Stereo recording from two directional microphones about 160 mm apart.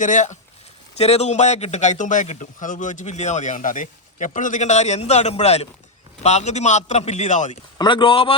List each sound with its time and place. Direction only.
0.0 s a man's voice: 50° left (ahead or behind)
7.8 s speech: 30° left (ahead or behind)